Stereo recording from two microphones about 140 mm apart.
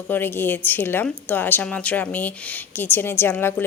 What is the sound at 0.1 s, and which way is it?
A woman's voice, 15° left (ahead or behind).